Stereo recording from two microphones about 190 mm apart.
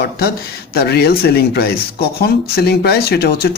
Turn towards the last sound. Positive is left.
turn(degrees=55)  # may be behind; listen again after turning